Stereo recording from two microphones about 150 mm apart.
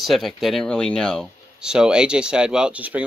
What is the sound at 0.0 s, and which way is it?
Speech, centre (ahead or behind).